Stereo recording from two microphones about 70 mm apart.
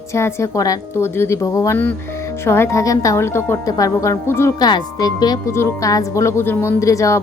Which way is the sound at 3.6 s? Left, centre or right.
Left.